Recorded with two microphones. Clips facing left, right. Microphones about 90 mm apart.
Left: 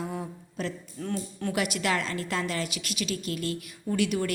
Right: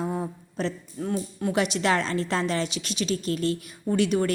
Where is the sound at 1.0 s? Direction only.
15° right (ahead or behind).